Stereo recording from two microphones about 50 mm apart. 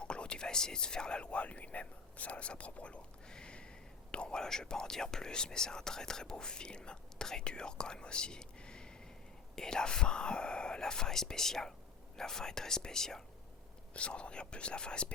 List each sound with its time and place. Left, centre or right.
0.0 s speech: centre
13.9 s speech: left